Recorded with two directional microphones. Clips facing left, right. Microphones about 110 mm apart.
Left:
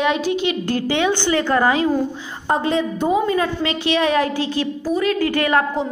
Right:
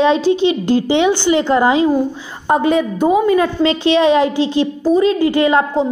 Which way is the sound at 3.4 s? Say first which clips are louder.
Right 6 dB; 25° right (ahead or behind).